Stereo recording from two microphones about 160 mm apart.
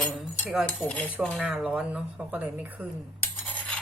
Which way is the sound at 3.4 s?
10° left (ahead or behind).